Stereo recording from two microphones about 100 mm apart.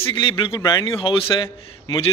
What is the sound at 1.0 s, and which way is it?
Speech, 60° left (ahead or behind).